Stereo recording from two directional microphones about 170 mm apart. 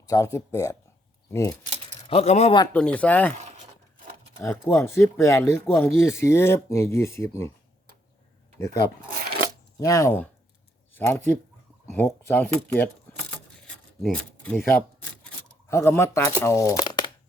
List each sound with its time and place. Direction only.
0.0 s speech: 20° left (ahead or behind)
2.0 s speech: 40° left (ahead or behind)
2.7 s speech: 10° left (ahead or behind)
3.3 s a sound: 40° right (ahead or behind)
4.4 s speech: 15° left (ahead or behind)
8.5 s speech: 15° left (ahead or behind)
9.0 s a sound: 60° right (ahead or behind)
9.8 s speech: 20° left (ahead or behind)
14.0 s speech: 5° left (ahead or behind)
14.7 s a sound: 10° left (ahead or behind)
15.7 s speech: 15° left (ahead or behind)